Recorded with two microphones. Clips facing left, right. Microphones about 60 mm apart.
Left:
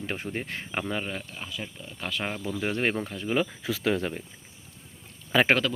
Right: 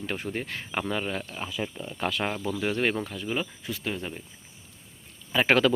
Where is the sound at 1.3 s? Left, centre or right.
Right.